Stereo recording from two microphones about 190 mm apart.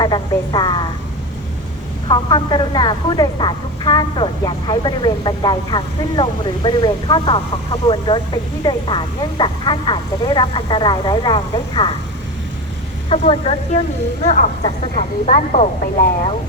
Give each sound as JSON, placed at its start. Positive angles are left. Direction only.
{"t": 0.0, "sound": "a woman's voice", "side_deg": 20}
{"t": 2.0, "sound": "speech", "side_deg": 25}
{"t": 13.1, "sound": "speech", "side_deg": 30}
{"t": 14.9, "sound": "speech", "side_deg": 40}